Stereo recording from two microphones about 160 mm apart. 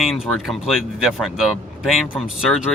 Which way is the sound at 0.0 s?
Centre (ahead or behind).